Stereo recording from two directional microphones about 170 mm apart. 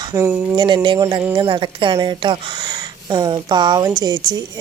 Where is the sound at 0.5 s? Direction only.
30° right (ahead or behind).